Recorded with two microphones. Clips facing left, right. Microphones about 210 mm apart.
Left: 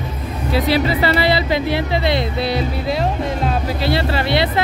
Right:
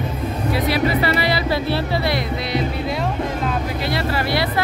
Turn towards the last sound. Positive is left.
turn(degrees=25)  # may be behind; listen again after turning